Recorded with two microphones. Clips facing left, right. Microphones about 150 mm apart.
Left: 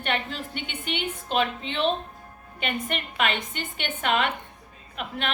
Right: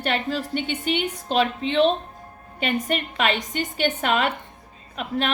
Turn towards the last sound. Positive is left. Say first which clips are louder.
# right 5 dB
turn(degrees=-40)  # may be behind; listen again after turning